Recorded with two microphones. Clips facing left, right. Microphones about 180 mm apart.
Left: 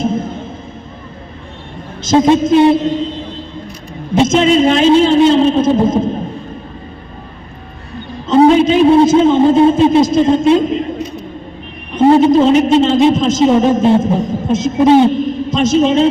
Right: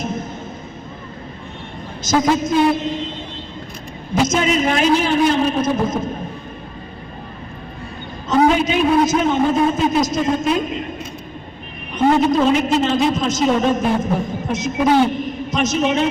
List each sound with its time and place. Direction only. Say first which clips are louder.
0.0 s music: left 8 dB; 30° left (ahead or behind)
2.0 s a woman's voice: left 7 dB; 25° left (ahead or behind)
4.1 s a woman's voice: left 7 dB; 25° left (ahead or behind)
8.3 s a woman's voice: left 7 dB; 30° left (ahead or behind)
11.9 s a woman's voice: left 7 dB; 30° left (ahead or behind)